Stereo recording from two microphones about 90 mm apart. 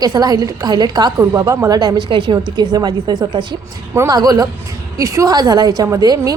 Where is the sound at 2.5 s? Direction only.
50° right (ahead or behind).